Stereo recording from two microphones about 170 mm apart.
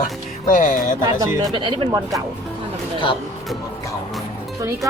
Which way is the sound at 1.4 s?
25° right (ahead or behind).